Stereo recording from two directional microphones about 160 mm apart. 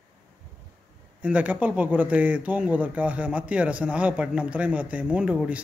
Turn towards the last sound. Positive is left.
turn(degrees=-5)  # may be behind; listen again after turning